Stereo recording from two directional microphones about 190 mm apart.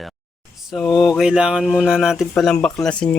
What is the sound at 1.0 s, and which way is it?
Speech, 5° right (ahead or behind).